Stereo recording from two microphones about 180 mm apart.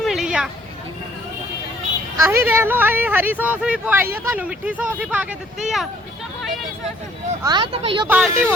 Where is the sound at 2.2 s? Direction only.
15° right (ahead or behind).